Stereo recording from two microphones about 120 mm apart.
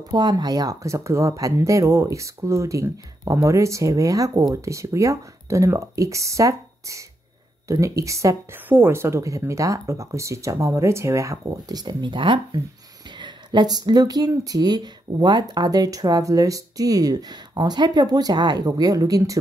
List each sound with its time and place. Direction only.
0.1 s speech: 35° right (ahead or behind)